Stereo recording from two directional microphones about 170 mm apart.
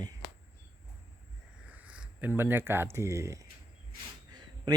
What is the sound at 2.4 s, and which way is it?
Speech, 10° right (ahead or behind).